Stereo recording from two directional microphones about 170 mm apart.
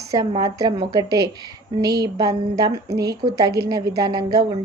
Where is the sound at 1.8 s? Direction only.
75° right (ahead or behind).